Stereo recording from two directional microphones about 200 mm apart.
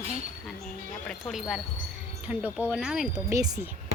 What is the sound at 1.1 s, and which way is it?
Speech, centre (ahead or behind).